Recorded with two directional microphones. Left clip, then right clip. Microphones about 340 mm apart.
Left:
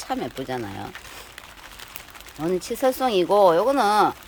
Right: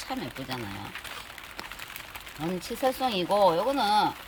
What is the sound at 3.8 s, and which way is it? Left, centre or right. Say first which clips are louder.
Speech: left 5 dB; centre.